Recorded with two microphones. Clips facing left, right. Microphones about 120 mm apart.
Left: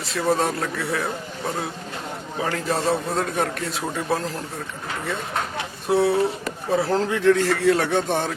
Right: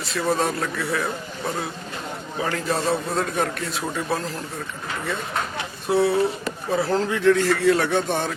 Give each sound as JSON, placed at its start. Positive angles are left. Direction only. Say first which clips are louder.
{"t": 0.2, "sound": "a man's voice", "louder": "left 1 dB", "side_deg": 35}